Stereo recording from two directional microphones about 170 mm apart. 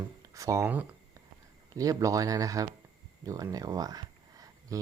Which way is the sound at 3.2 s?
20° right (ahead or behind).